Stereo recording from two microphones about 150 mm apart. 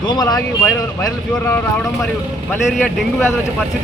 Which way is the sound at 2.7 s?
Centre (ahead or behind).